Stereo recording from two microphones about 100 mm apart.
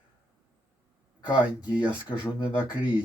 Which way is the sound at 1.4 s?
15° right (ahead or behind).